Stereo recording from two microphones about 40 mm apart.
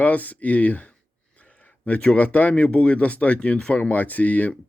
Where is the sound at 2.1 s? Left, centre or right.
Left.